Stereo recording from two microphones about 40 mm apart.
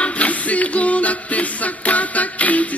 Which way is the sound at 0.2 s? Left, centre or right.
Left.